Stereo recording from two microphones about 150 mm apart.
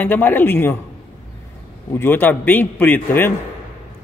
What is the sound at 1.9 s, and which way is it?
A man's voice, 15° left (ahead or behind).